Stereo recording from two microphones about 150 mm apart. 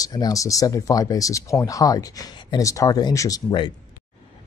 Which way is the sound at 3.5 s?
35° left (ahead or behind).